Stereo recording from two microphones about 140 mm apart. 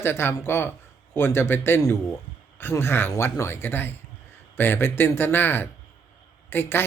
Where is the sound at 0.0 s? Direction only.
15° left (ahead or behind).